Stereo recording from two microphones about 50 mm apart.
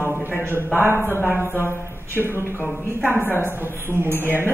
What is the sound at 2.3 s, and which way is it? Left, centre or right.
A man's voice, left.